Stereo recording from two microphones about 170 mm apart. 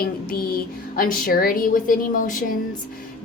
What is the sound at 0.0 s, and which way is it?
A woman's voice, 60° left (ahead or behind).